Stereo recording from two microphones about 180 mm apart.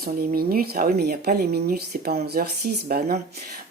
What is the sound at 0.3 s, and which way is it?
A woman's voice, 55° right (ahead or behind).